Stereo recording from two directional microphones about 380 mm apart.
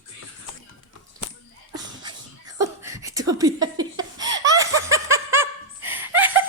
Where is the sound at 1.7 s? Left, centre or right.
Centre.